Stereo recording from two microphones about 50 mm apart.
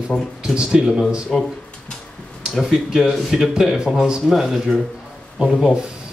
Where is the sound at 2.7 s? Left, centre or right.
Centre.